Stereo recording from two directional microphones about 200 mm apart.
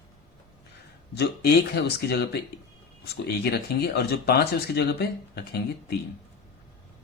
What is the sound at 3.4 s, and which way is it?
Speech, 50° left (ahead or behind).